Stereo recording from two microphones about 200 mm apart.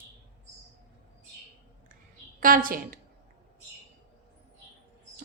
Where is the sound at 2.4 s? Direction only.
45° right (ahead or behind).